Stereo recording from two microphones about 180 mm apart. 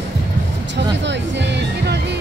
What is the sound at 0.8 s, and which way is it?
Music, 75° right (ahead or behind).